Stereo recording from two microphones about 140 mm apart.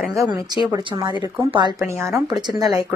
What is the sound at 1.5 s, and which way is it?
Speech, 35° right (ahead or behind).